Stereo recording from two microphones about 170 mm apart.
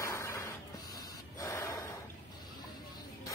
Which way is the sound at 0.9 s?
20° left (ahead or behind).